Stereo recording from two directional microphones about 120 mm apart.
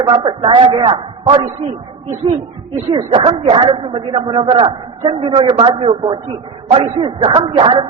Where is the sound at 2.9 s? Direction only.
40° right (ahead or behind).